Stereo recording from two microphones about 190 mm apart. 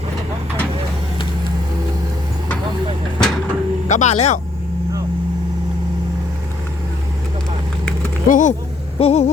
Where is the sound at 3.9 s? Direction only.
40° left (ahead or behind).